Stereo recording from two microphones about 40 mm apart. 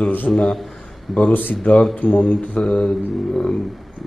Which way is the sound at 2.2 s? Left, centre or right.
Left.